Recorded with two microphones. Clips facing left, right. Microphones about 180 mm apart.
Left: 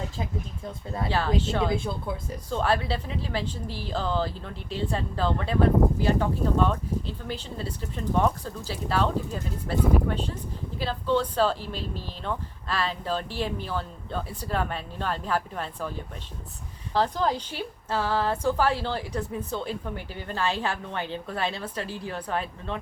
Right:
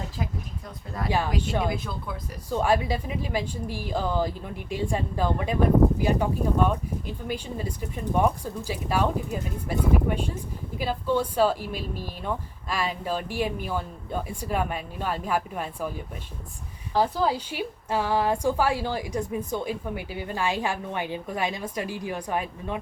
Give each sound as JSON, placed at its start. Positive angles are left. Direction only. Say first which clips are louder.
{"t": 0.2, "sound": "speech", "louder": "even", "side_deg": 25}
{"t": 1.4, "sound": "a woman's voice", "louder": "even", "side_deg": -15}
{"t": 1.7, "sound": "speech", "louder": "left 4 dB", "side_deg": 25}
{"t": 2.5, "sound": "a woman's voice", "louder": "right 2 dB", "side_deg": -10}